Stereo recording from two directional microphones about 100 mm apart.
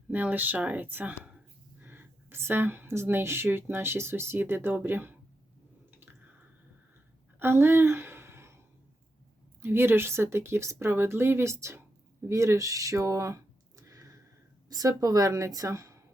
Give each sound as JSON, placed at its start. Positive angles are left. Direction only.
{"t": 0.1, "sound": "speech", "side_deg": -15}
{"t": 6.0, "sound": "squish", "side_deg": -20}
{"t": 7.3, "sound": "a sound", "side_deg": -25}
{"t": 9.6, "sound": "a woman's voice", "side_deg": -25}